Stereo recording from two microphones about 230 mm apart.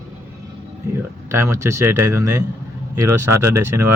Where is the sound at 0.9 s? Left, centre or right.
Centre.